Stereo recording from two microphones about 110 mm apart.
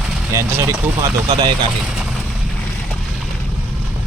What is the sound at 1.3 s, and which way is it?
Speech, 45° right (ahead or behind).